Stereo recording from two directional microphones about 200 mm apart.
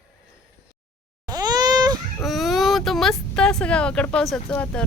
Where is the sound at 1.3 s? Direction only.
20° right (ahead or behind).